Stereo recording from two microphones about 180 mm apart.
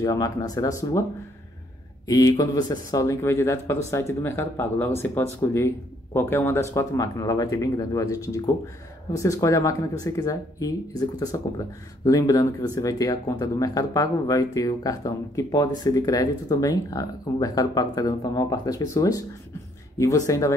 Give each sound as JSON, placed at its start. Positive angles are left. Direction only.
{"t": 0.0, "sound": "speech", "side_deg": 20}
{"t": 2.0, "sound": "speech", "side_deg": 20}